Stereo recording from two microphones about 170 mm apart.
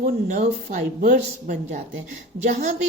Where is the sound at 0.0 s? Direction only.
55° right (ahead or behind).